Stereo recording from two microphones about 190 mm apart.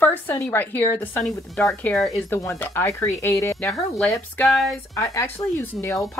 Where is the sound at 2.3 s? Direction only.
15° left (ahead or behind).